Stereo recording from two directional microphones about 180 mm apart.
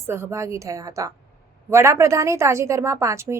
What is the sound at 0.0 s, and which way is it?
A woman's voice, 15° right (ahead or behind).